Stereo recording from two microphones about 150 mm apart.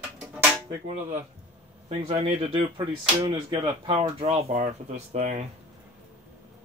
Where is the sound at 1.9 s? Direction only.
45° right (ahead or behind).